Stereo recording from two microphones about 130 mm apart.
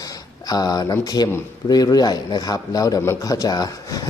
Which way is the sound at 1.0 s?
30° left (ahead or behind).